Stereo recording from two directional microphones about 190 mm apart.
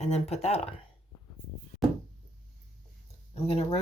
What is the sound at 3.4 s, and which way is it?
Speech, 30° left (ahead or behind).